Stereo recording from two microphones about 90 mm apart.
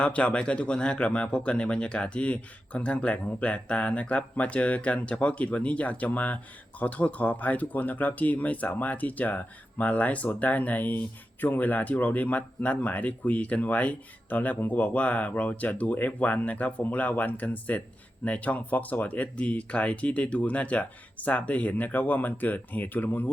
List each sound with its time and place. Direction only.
0.0 s speech: 15° left (ahead or behind)